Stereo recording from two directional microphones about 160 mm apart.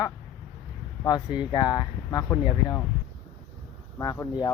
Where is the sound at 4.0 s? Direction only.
25° left (ahead or behind).